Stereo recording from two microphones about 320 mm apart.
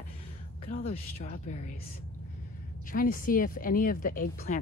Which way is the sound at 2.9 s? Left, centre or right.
Left.